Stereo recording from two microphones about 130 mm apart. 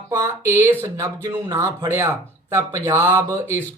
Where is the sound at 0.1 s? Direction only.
25° right (ahead or behind).